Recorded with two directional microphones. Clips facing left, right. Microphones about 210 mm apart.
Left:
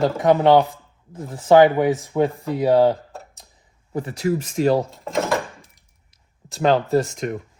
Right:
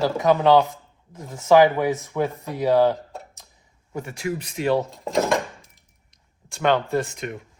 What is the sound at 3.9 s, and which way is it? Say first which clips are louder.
Speech: left 6 dB; 35° left (ahead or behind).